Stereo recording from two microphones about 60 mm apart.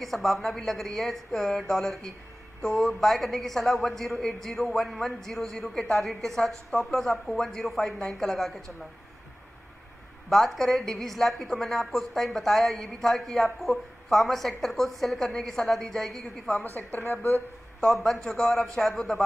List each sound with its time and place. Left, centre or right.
0.0 s a woman's voice: centre
10.3 s a woman's voice: centre
16.6 s a woman's voice: left
17.7 s speech: centre